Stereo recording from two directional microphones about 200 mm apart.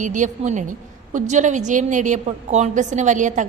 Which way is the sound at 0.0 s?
40° right (ahead or behind).